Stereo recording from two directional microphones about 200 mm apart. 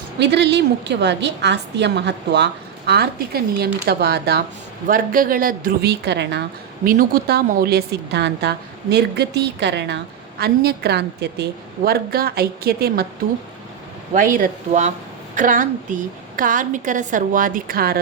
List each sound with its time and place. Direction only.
0.2 s a woman's voice: 60° right (ahead or behind)
6.8 s a woman's voice: 45° right (ahead or behind)
14.1 s a woman's voice: 40° right (ahead or behind)